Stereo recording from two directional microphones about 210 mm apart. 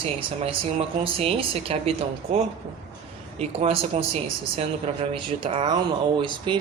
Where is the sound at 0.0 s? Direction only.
25° right (ahead or behind).